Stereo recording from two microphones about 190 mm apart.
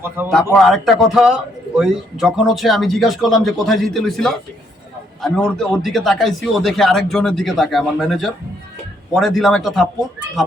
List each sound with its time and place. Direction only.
0.2 s a man's voice: 10° right (ahead or behind)
0.5 s a man's voice: centre (ahead or behind)